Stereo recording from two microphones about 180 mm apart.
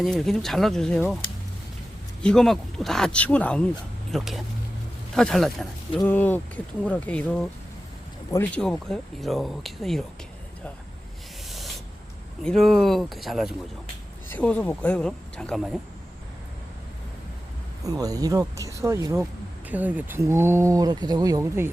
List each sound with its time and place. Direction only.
0.0 s speech: centre (ahead or behind)
2.2 s speech: centre (ahead or behind)
12.4 s speech: 5° left (ahead or behind)
17.8 s speech: 20° right (ahead or behind)